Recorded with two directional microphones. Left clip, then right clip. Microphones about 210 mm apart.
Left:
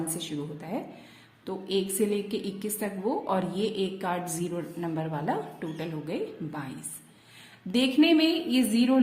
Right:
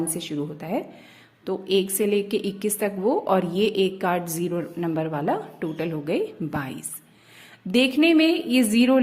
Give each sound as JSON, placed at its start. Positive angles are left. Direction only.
{"t": 0.1, "sound": "a woman's voice", "side_deg": -30}
{"t": 7.7, "sound": "a woman's voice", "side_deg": -30}